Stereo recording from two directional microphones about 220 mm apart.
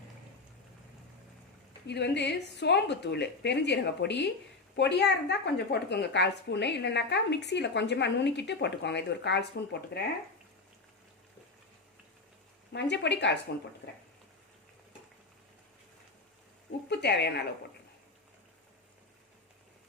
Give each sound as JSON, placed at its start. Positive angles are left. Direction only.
{"t": 1.9, "sound": "a woman's voice", "side_deg": 50}
{"t": 12.7, "sound": "a woman's voice", "side_deg": 50}
{"t": 16.9, "sound": "a woman's voice", "side_deg": 50}